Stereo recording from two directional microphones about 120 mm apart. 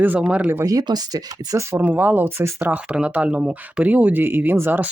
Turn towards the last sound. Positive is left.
turn(degrees=-15)  # may be behind; listen again after turning